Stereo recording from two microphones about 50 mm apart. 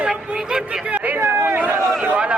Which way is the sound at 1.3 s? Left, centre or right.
Right.